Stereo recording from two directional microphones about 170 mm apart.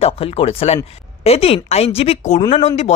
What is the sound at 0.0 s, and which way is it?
Speech, 35° left (ahead or behind).